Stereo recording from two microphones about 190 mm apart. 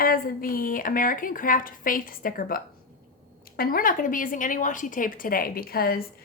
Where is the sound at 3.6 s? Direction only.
50° left (ahead or behind).